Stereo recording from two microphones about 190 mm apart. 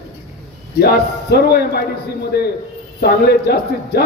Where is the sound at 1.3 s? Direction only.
55° left (ahead or behind).